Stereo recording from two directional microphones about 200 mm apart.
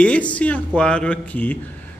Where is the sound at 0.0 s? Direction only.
5° left (ahead or behind).